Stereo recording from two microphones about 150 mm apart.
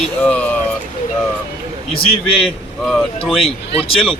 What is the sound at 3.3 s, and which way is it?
Speech, 40° left (ahead or behind).